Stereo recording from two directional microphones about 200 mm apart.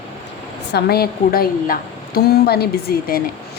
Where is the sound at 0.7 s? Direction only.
50° left (ahead or behind).